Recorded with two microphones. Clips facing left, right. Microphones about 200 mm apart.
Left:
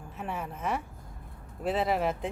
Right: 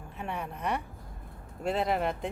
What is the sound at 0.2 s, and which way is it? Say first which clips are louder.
A woman's voice: even; centre (ahead or behind).